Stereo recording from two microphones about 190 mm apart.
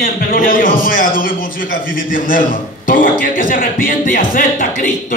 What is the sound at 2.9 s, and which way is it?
Speech, 45° left (ahead or behind).